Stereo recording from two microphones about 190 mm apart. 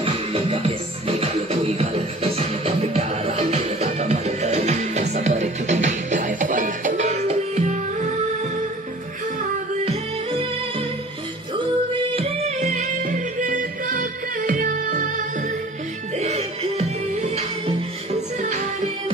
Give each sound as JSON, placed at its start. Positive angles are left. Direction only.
{"t": 0.0, "sound": "music", "side_deg": -30}
{"t": 11.5, "sound": "music", "side_deg": -25}
{"t": 18.4, "sound": "music", "side_deg": -40}